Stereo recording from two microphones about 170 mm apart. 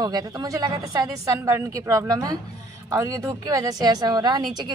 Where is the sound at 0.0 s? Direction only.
25° right (ahead or behind).